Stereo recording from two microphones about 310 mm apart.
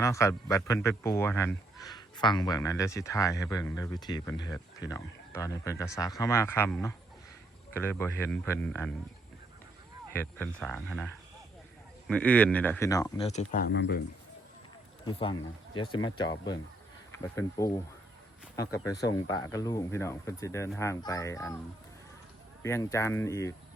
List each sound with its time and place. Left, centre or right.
0.0 s speech: centre
10.1 s speech: centre; by 14.0 s left
15.0 s speech: centre
22.6 s speech: centre